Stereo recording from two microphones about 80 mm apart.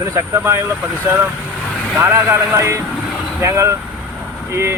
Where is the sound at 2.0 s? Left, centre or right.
Right.